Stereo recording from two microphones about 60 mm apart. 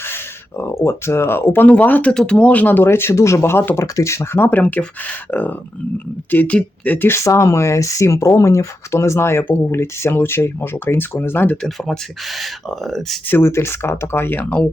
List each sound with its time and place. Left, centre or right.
0.0 s speech: left
1.6 s speech: left
2.1 s speech: centre; by 4.6 s left
4.6 s speech: left
7.3 s speech: left
11.8 s speech: centre
13.2 s speech: left
13.5 s speech: left